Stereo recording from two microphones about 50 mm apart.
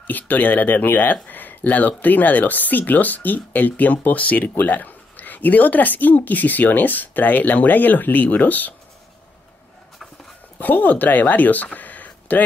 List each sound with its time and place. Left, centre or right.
0.0 s speech: left
10.6 s speech: left